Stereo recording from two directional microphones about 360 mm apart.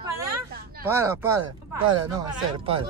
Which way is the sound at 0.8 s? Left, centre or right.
Centre.